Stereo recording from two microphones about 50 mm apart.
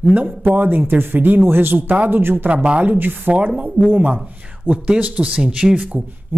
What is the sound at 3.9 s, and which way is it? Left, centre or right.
Speech, right.